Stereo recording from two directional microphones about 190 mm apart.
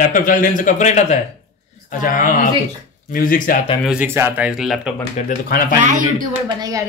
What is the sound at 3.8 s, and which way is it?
Speech, 5° right (ahead or behind).